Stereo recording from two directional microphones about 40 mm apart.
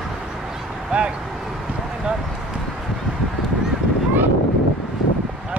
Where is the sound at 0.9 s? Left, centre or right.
Right.